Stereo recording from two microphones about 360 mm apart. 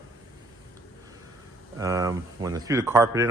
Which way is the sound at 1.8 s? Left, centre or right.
Centre.